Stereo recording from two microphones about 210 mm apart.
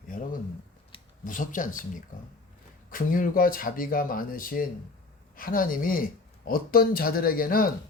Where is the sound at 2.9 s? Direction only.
40° left (ahead or behind).